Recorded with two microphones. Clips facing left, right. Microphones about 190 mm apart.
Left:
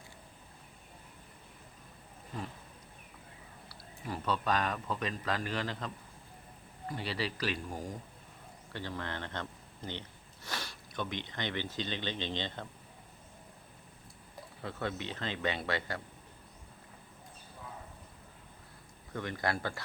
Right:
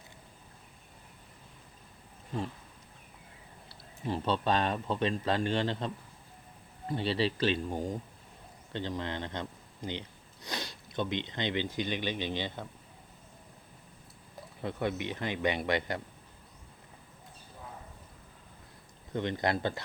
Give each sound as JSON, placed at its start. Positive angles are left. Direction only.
{"t": 3.7, "sound": "speech", "side_deg": -25}
{"t": 14.6, "sound": "speech", "side_deg": -20}
{"t": 19.1, "sound": "speech", "side_deg": -20}